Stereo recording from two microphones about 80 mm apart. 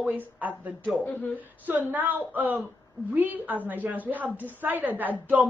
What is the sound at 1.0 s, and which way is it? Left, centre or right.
Speech, centre.